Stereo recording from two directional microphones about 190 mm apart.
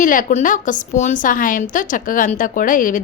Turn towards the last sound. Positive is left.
turn(degrees=45)  # may be behind; listen again after turning